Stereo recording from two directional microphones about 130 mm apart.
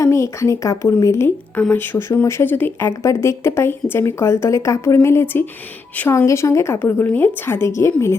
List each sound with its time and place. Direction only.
0.0 s speech: 20° left (ahead or behind)